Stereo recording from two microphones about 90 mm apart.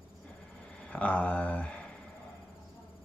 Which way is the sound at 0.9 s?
15° left (ahead or behind).